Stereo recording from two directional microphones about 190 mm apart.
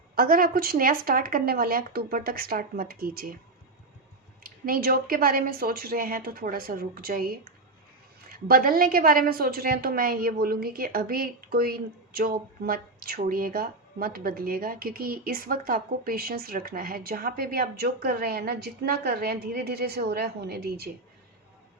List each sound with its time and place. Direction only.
0.2 s a woman's voice: 50° right (ahead or behind)
4.4 s a woman's voice: 50° right (ahead or behind)